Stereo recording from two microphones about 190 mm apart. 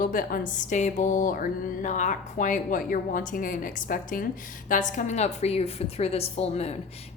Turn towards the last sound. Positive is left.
turn(degrees=35)  # may be behind; listen again after turning